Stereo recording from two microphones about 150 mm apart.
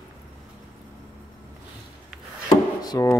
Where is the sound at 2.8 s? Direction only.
20° left (ahead or behind).